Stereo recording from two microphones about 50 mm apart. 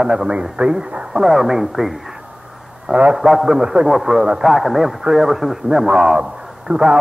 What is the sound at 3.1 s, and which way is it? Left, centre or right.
A man's voice, centre.